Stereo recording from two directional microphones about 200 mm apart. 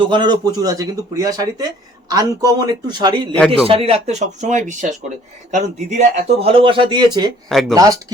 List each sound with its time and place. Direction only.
0.0 s a man's voice: 25° right (ahead or behind)
7.5 s speech: centre (ahead or behind)